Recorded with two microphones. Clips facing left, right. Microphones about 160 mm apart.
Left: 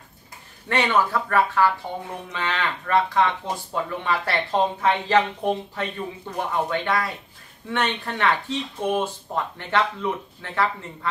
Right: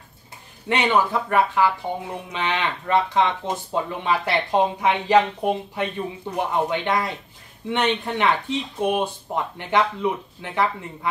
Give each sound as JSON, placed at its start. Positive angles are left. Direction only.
{"t": 0.7, "sound": "speech", "side_deg": -20}